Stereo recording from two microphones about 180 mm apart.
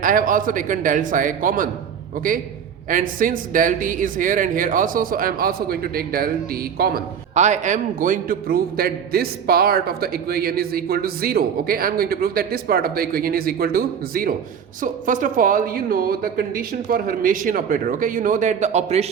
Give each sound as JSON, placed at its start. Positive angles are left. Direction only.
{"t": 0.0, "sound": "a woman's voice", "side_deg": -50}
{"t": 2.9, "sound": "a woman's voice", "side_deg": -50}
{"t": 7.3, "sound": "a man's voice", "side_deg": -40}